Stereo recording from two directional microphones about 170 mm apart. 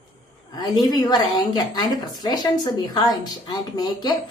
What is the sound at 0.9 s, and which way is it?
A woman's voice, 25° left (ahead or behind).